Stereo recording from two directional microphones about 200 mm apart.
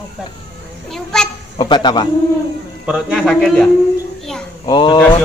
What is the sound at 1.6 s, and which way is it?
Speech, 20° left (ahead or behind).